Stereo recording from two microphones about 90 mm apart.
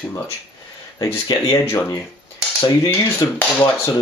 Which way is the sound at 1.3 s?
50° left (ahead or behind).